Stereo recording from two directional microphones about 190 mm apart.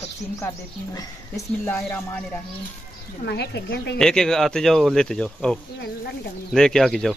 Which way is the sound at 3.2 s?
60° left (ahead or behind).